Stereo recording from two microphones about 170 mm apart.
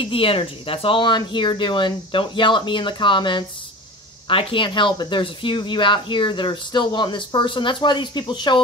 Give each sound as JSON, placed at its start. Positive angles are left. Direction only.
{"t": 0.0, "sound": "speech", "side_deg": 30}